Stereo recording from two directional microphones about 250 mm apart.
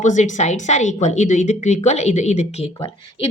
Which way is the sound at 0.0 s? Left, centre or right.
Left.